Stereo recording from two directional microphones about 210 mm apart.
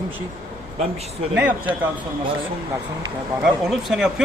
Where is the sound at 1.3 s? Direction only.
5° right (ahead or behind).